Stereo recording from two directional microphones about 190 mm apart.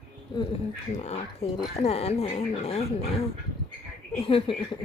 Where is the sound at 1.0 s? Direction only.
35° left (ahead or behind).